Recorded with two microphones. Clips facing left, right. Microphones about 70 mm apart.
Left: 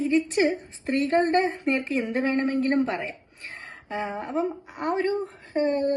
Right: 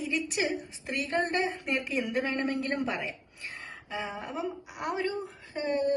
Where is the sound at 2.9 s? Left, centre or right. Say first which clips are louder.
Left 4 dB; left.